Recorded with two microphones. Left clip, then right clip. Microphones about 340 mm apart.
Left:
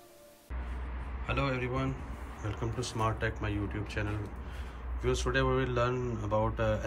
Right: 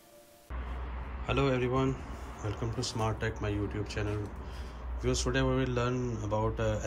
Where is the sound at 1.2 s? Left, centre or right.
Centre.